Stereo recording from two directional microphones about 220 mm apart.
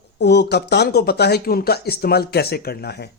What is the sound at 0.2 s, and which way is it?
A man's voice, 50° left (ahead or behind).